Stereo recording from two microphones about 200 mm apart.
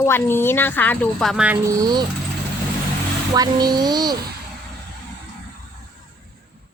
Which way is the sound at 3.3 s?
20° right (ahead or behind).